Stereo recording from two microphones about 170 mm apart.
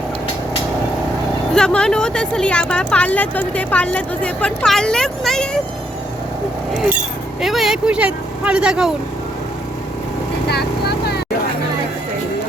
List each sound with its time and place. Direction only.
1.5 s speech: 5° left (ahead or behind)
6.7 s speech: 10° right (ahead or behind)
10.5 s vehicle: 70° left (ahead or behind)